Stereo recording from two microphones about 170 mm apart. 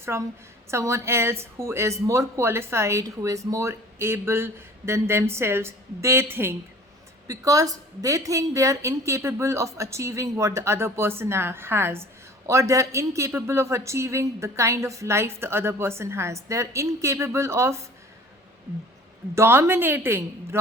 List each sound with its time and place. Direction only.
0.1 s a woman's voice: 15° right (ahead or behind)
19.3 s speech: 15° right (ahead or behind)